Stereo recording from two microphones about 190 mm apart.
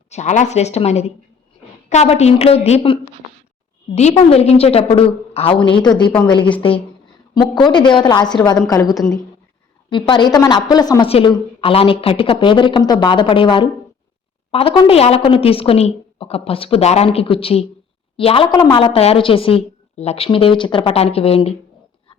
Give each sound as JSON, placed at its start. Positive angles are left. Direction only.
{"t": 0.1, "sound": "a woman's voice", "side_deg": 40}